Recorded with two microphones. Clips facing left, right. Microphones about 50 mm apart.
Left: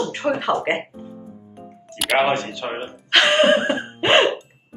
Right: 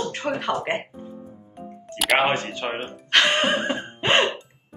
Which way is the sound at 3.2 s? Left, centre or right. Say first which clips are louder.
Left 5 dB; left.